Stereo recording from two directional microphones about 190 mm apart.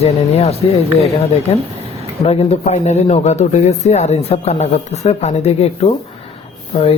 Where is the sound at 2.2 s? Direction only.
30° left (ahead or behind).